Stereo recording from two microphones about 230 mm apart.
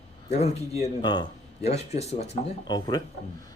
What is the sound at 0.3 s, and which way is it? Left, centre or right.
Speech, left.